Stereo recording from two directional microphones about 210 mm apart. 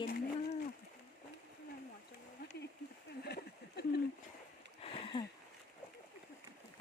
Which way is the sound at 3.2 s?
50° left (ahead or behind).